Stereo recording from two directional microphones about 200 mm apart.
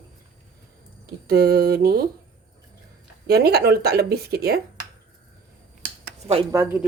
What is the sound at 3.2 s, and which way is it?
A woman's voice, 55° right (ahead or behind).